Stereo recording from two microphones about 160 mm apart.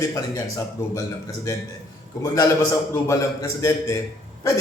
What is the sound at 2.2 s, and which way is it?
A man's voice, 20° left (ahead or behind).